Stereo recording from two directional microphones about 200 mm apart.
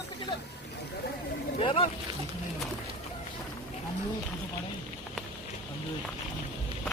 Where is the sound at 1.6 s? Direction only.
30° left (ahead or behind).